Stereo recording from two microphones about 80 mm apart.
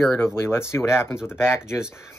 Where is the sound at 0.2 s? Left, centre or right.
Left.